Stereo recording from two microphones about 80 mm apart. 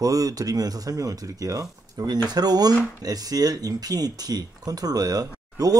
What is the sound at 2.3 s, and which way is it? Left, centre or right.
Speech, right.